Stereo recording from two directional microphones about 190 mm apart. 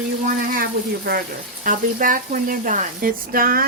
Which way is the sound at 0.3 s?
50° right (ahead or behind).